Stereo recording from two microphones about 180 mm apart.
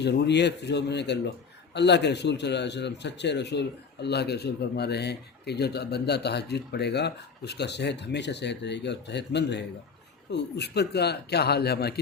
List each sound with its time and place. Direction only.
0.0 s a man's voice: 70° left (ahead or behind)